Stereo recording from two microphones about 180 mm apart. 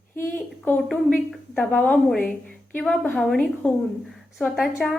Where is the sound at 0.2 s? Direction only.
10° left (ahead or behind).